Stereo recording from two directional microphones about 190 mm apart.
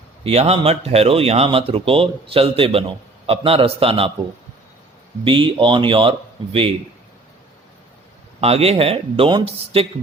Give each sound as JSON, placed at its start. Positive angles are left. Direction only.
{"t": 0.3, "sound": "speech", "side_deg": -30}
{"t": 5.2, "sound": "speech", "side_deg": -30}
{"t": 8.4, "sound": "speech", "side_deg": -35}